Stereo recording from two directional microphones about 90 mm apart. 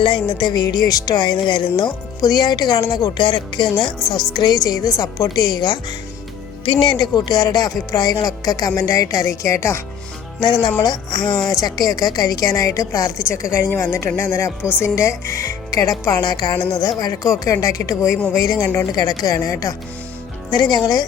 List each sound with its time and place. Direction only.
0.0 s music: 60° left (ahead or behind)
1.7 s speech: 45° left (ahead or behind)
6.7 s a woman's voice: 65° left (ahead or behind); by 9.8 s 30° left (ahead or behind)
10.4 s a woman's voice: 50° left (ahead or behind); by 14.7 s 30° left (ahead or behind)
14.7 s speech: 15° right (ahead or behind)
14.9 s a woman's voice: 35° left (ahead or behind)
20.5 s speech: 50° left (ahead or behind)